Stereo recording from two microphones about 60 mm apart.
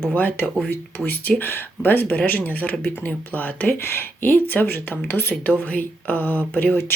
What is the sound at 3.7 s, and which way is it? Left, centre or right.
Speech, left.